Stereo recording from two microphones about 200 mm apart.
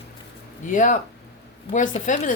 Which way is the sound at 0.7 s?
40° left (ahead or behind).